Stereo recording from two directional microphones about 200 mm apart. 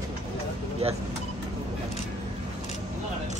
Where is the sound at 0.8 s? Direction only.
30° right (ahead or behind).